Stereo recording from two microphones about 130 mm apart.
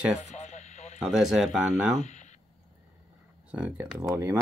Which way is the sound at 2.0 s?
65° left (ahead or behind).